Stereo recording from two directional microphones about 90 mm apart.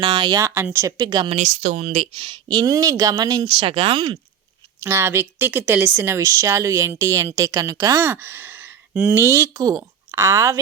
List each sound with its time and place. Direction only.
0.0 s speech: 55° right (ahead or behind)
0.4 s speech: 30° right (ahead or behind)
0.9 s speech: 55° right (ahead or behind)
3.4 s speech: 90° right
4.8 s speech: 30° right (ahead or behind)
6.0 s speech: 30° right (ahead or behind)
8.0 s speech: 25° right (ahead or behind)
9.2 s speech: 30° right (ahead or behind)
9.6 s a woman's voice: 40° right (ahead or behind)